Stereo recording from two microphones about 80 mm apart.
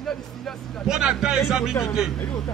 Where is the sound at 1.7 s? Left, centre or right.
Left.